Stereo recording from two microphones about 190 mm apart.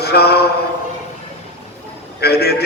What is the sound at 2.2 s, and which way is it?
Mantra, 55° left (ahead or behind).